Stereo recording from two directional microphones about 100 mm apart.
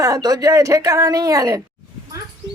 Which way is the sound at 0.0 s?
35° right (ahead or behind).